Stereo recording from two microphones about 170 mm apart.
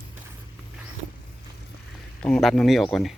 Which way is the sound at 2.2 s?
5° left (ahead or behind).